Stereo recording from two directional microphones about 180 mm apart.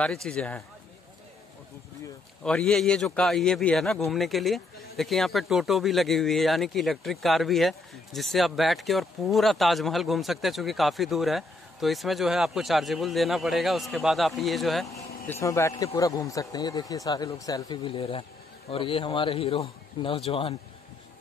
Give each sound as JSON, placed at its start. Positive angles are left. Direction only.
{"t": 0.0, "sound": "speech", "side_deg": 5}
{"t": 2.4, "sound": "speech", "side_deg": 5}
{"t": 15.4, "sound": "a man's voice", "side_deg": 15}